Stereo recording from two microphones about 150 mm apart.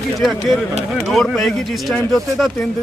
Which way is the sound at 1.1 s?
Centre (ahead or behind).